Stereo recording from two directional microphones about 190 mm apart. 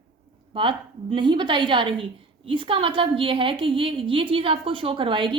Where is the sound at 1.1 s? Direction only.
25° right (ahead or behind).